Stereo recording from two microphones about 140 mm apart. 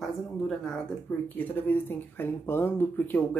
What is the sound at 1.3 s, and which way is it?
Speech, 15° left (ahead or behind).